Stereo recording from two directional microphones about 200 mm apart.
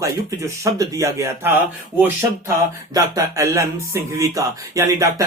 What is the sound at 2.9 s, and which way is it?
Speech, 15° right (ahead or behind).